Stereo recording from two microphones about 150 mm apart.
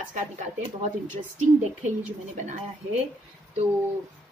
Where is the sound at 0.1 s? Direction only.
55° right (ahead or behind).